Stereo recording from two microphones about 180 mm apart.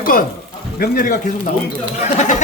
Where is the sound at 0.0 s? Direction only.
50° left (ahead or behind).